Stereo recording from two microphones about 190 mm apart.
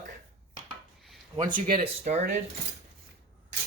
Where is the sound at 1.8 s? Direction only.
35° right (ahead or behind).